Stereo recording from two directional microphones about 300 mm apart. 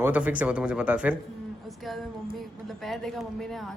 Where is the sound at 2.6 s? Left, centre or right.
Centre.